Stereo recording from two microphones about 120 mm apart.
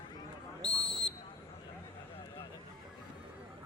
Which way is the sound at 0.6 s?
5° left (ahead or behind).